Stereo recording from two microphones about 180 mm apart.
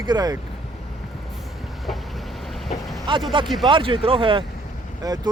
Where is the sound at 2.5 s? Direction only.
Centre (ahead or behind).